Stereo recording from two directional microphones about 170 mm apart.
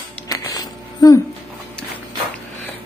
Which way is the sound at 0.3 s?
20° left (ahead or behind).